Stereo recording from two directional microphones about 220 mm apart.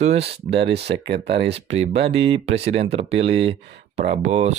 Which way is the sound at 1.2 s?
25° right (ahead or behind).